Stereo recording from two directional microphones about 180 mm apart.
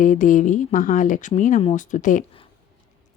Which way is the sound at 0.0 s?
45° left (ahead or behind).